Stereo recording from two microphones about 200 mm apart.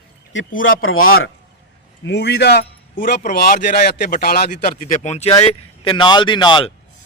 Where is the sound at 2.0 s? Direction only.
60° left (ahead or behind); by 6.7 s 25° left (ahead or behind).